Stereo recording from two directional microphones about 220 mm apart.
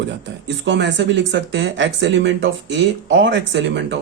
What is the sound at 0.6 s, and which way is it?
Speech, 55° right (ahead or behind).